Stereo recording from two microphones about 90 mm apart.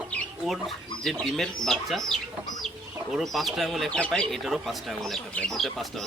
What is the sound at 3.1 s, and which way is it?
Speech, centre (ahead or behind).